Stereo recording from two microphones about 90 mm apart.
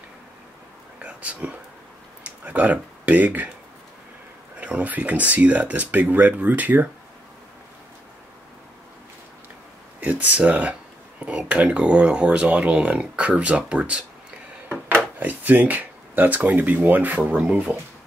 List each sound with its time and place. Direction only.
1.0 s speech: 15° right (ahead or behind)
4.6 s speech: 15° right (ahead or behind)
9.9 s speech: 15° right (ahead or behind)
15.1 s speech: 20° right (ahead or behind)